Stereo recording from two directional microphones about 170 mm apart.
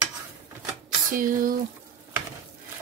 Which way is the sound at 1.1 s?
55° right (ahead or behind).